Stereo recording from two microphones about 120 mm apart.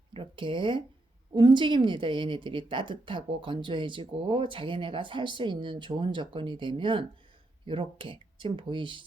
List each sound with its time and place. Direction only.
0.1 s speech: 45° right (ahead or behind)